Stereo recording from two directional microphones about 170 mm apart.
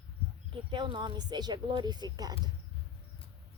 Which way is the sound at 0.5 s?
25° right (ahead or behind).